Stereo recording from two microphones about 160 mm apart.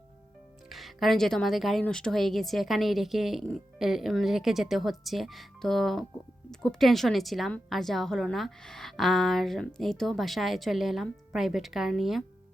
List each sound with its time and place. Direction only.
0.7 s a woman's voice: centre (ahead or behind)